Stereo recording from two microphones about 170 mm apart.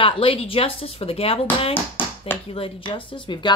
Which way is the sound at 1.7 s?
10° left (ahead or behind).